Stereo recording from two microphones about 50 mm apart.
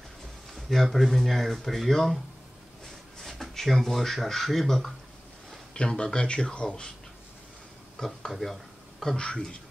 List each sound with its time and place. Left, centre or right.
0.6 s a sound: centre
0.9 s speech: centre
3.2 s speech: centre
5.8 s speech: centre
8.3 s speech: centre
9.0 s speech: centre